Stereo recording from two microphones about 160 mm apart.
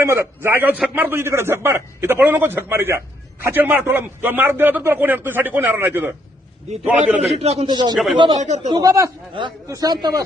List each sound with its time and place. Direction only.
0.0 s a man's voice: 15° right (ahead or behind)
7.3 s a man's voice: 40° right (ahead or behind)
7.7 s a man's voice: 25° right (ahead or behind)
8.4 s speech: 45° right (ahead or behind)
8.7 s a man's voice: 20° right (ahead or behind)